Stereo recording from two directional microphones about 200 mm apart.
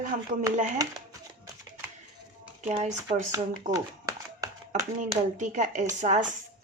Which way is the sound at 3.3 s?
15° right (ahead or behind).